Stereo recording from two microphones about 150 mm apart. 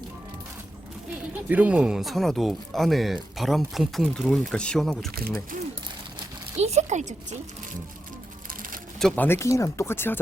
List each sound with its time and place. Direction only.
1.5 s speech: 10° right (ahead or behind)
6.6 s speech: 45° right (ahead or behind)
8.4 s music: 65° right (ahead or behind)
9.0 s speech: 5° left (ahead or behind)